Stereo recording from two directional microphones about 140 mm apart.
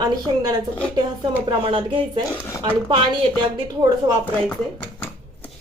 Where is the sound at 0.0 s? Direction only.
25° right (ahead or behind).